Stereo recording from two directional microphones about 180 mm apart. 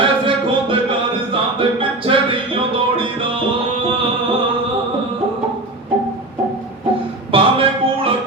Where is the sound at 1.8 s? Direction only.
30° right (ahead or behind).